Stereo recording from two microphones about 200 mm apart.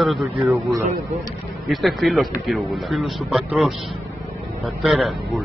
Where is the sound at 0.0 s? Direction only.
Centre (ahead or behind).